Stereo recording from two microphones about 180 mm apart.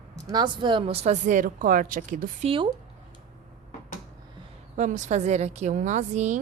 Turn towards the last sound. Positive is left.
turn(degrees=-40)  # may be behind; listen again after turning